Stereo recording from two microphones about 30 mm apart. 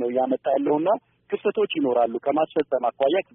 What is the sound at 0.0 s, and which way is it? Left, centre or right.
A woman's voice, centre.